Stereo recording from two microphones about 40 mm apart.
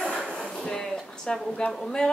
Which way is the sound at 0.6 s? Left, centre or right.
Centre.